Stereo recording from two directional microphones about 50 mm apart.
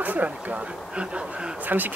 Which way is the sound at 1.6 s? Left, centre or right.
Right.